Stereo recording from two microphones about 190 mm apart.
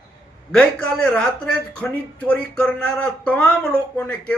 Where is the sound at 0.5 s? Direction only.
5° left (ahead or behind).